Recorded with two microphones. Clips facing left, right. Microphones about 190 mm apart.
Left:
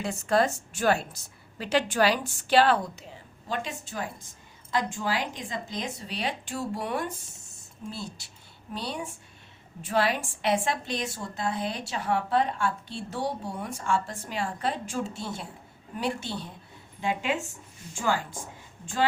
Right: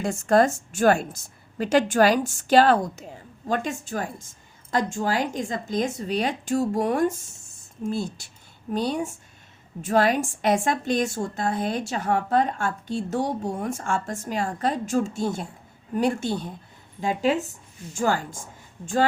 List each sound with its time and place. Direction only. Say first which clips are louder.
0.0 s a woman's voice: right 5 dB; 50° right (ahead or behind)